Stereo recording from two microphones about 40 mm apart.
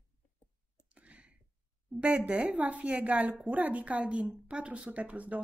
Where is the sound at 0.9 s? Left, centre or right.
Right.